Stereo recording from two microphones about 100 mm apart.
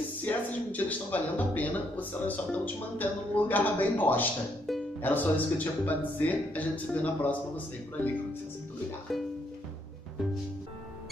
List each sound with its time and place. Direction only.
0.2 s a man's voice: 15° left (ahead or behind)
9.1 s speech: centre (ahead or behind)